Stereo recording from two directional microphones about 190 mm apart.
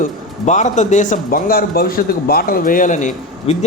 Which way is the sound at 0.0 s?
40° left (ahead or behind).